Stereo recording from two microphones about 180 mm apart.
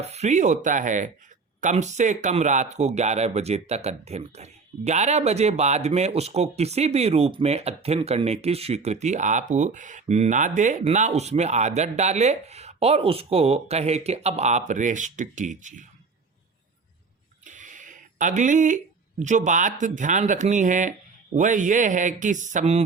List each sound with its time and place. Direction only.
0.0 s speech: 35° right (ahead or behind)
17.4 s a sound: 45° right (ahead or behind)
19.2 s speech: 45° right (ahead or behind)